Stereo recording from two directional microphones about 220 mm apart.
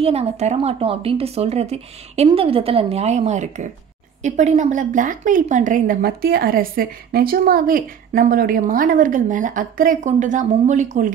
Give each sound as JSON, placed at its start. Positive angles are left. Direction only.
{"t": 0.0, "sound": "a woman's voice", "side_deg": -30}